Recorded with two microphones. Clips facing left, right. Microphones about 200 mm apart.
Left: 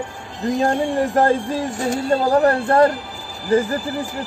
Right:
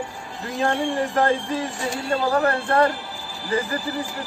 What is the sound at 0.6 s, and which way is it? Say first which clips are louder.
Speech: left 3 dB; 40° left (ahead or behind).